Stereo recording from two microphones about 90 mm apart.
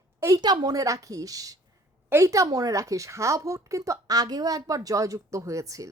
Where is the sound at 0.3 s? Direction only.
45° right (ahead or behind).